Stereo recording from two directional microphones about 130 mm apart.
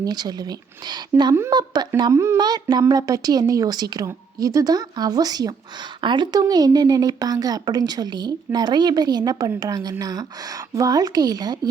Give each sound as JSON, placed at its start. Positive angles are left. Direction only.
{"t": 0.0, "sound": "a woman's voice", "side_deg": -30}
{"t": 2.4, "sound": "a woman's voice", "side_deg": -30}